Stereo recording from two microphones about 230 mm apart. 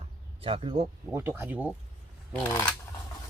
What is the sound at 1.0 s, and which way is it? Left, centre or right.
Speech, centre.